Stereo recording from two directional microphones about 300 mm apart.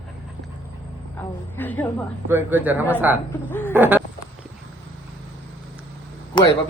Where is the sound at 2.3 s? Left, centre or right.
Centre.